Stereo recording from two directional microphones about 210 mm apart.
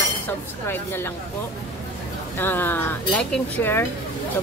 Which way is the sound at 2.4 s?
10° left (ahead or behind).